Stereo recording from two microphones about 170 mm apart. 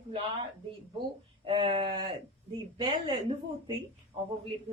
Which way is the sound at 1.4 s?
30° right (ahead or behind).